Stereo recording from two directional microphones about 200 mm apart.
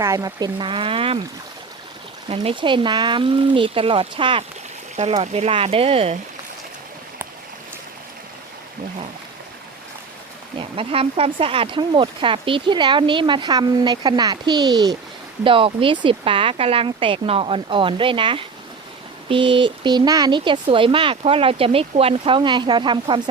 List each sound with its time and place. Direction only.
0.0 s speech: 15° right (ahead or behind)
2.3 s speech: 30° right (ahead or behind)
10.6 s speech: 25° right (ahead or behind)